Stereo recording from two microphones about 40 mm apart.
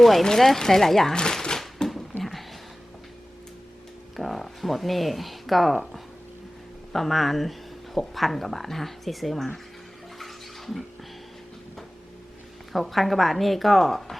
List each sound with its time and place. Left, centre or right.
0.0 s speech: centre
4.2 s speech: centre
6.9 s speech: centre
10.2 s bathtub: centre
12.7 s speech: centre